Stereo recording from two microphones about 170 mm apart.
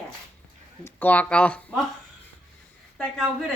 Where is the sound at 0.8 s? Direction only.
10° left (ahead or behind).